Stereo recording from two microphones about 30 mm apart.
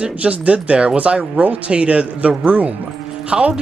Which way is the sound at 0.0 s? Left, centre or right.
Right.